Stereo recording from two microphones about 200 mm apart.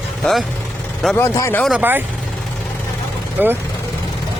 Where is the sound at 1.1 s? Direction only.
15° left (ahead or behind).